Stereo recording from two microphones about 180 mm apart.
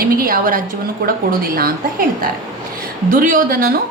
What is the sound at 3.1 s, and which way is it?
Speech, 50° right (ahead or behind).